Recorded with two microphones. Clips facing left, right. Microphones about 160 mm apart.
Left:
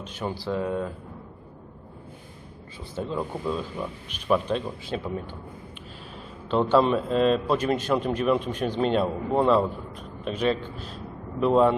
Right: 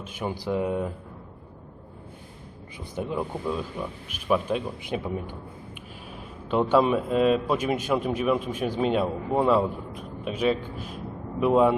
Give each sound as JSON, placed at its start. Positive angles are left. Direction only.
{"t": 0.0, "sound": "a man's voice", "side_deg": -10}
{"t": 2.9, "sound": "a man's voice", "side_deg": -15}
{"t": 6.5, "sound": "a man's voice", "side_deg": -10}